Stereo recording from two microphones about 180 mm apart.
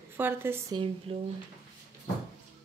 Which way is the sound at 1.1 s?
30° right (ahead or behind).